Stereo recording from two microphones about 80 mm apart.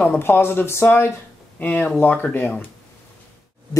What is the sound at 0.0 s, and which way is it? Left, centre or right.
Speech, left.